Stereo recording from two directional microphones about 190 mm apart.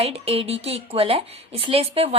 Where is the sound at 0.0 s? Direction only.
30° right (ahead or behind).